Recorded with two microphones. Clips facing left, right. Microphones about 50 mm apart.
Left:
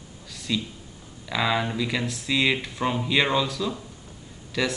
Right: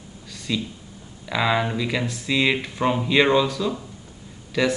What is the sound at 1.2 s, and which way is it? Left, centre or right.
Speech, centre.